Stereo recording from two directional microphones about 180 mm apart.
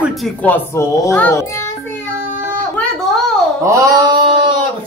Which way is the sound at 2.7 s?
Centre (ahead or behind).